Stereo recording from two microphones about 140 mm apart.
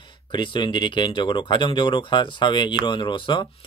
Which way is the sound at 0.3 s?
35° left (ahead or behind).